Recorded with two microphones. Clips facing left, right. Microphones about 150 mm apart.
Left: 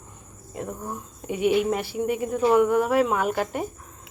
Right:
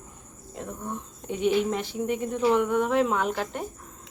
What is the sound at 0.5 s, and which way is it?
A woman's voice, 5° left (ahead or behind).